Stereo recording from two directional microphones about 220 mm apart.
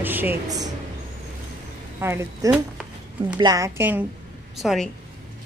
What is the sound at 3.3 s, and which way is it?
Speech, 15° right (ahead or behind).